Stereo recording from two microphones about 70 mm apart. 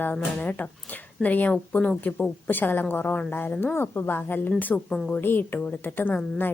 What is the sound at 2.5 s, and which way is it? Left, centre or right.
Speech, left.